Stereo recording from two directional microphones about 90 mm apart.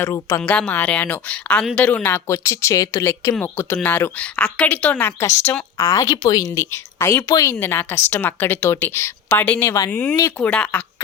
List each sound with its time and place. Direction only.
0.4 s a woman's voice: 15° left (ahead or behind); by 3.0 s 40° left (ahead or behind)
3.0 s a woman's voice: 25° left (ahead or behind); by 6.7 s 45° left (ahead or behind)
7.0 s a woman's voice: 25° left (ahead or behind)
7.3 s speech: 40° left (ahead or behind)
7.6 s a woman's voice: 25° left (ahead or behind)